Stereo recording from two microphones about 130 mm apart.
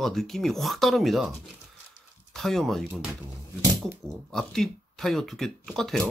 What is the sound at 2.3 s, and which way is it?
Speech, centre (ahead or behind).